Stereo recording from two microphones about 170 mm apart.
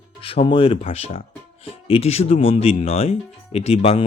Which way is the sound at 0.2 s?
35° left (ahead or behind).